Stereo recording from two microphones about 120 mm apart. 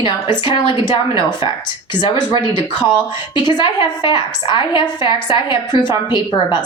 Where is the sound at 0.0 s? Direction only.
45° left (ahead or behind).